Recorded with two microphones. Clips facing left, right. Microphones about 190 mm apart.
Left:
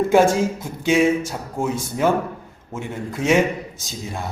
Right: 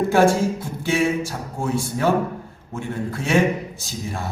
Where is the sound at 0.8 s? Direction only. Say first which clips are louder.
Left 4 dB; 20° left (ahead or behind).